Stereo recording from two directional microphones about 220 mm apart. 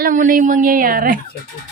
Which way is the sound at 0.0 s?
35° right (ahead or behind).